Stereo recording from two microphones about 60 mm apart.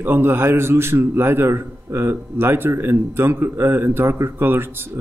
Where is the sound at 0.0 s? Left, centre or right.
Right.